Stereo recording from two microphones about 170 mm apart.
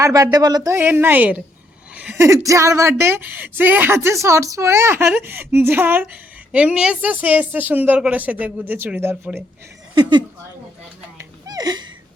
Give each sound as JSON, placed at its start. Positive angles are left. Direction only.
{"t": 0.0, "sound": "speech", "side_deg": -20}
{"t": 9.9, "sound": "a woman's voice", "side_deg": -25}
{"t": 11.2, "sound": "a sound", "side_deg": -20}